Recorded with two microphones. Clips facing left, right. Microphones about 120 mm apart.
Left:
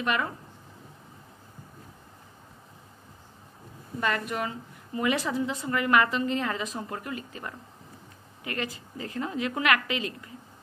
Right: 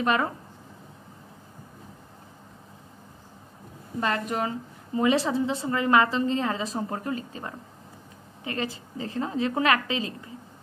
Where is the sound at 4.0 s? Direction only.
30° right (ahead or behind).